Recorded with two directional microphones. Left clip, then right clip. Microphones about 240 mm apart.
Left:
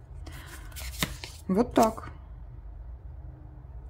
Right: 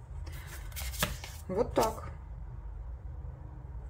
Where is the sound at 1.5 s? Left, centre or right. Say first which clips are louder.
Left 5 dB; left.